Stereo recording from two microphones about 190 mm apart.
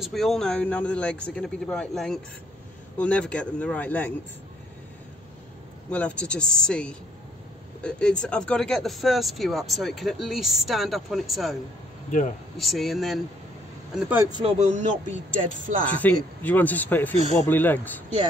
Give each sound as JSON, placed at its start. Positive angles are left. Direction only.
{"t": 0.0, "sound": "speech", "side_deg": 0}
{"t": 5.9, "sound": "speech", "side_deg": 5}
{"t": 12.5, "sound": "speech", "side_deg": 0}
{"t": 14.3, "sound": "speech", "side_deg": -35}
{"t": 16.0, "sound": "speech", "side_deg": 10}